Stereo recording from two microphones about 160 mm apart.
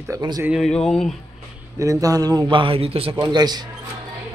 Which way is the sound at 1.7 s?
20° right (ahead or behind).